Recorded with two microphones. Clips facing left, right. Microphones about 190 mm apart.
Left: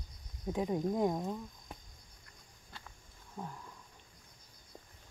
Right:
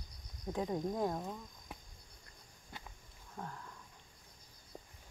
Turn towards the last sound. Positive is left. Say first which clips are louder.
# left 2 dB
turn(degrees=10)  # may be behind; listen again after turning